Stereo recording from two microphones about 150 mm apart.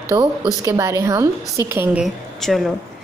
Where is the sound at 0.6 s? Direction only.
20° right (ahead or behind).